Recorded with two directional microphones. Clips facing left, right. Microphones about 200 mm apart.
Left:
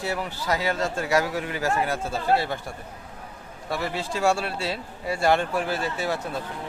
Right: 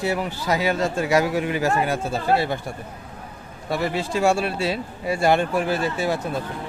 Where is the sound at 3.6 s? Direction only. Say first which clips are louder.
Right 4 dB; 20° right (ahead or behind).